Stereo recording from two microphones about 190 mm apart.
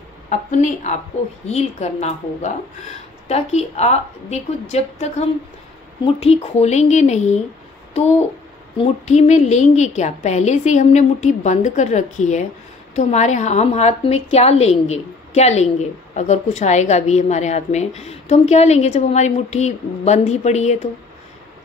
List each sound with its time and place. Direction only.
0.3 s a woman's voice: 40° left (ahead or behind)
9.0 s a woman's voice: 40° left (ahead or behind)